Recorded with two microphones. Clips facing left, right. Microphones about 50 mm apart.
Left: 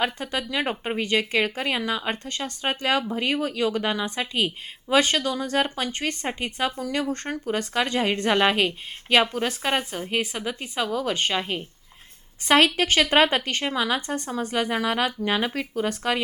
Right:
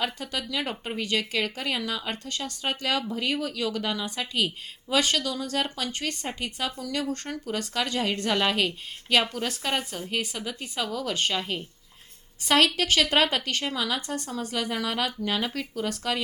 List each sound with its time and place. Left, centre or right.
0.0 s speech: left